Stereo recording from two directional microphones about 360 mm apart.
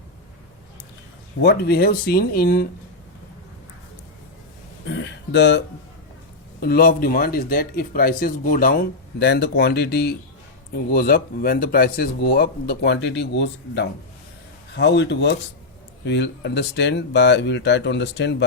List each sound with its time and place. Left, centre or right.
1.4 s speech: left
4.9 s a sound: left
6.6 s speech: left